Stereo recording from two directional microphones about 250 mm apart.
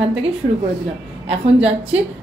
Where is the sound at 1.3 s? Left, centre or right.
Right.